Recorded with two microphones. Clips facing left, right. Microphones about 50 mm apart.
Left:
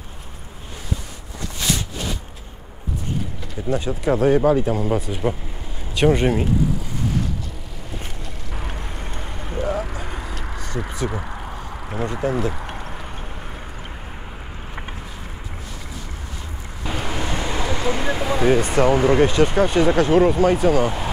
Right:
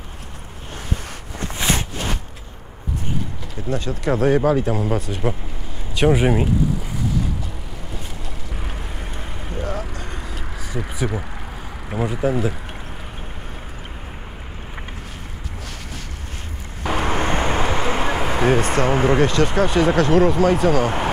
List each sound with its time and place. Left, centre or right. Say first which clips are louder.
1.4 s a sound: right 2 dB; right
3.6 s speech: left 2 dB; centre
8.5 s vehicle: left 2 dB; centre
11.9 s speech: right 2 dB; centre
17.0 s a sound: right 5 dB; right
18.9 s speech: left 2 dB; centre
19.2 s speech: left 1 dB; centre